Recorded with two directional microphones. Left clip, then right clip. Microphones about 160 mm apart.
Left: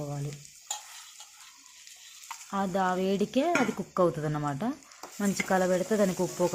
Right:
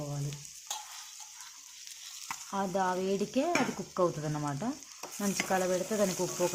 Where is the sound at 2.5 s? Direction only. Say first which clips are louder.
Left 3 dB; 20° left (ahead or behind).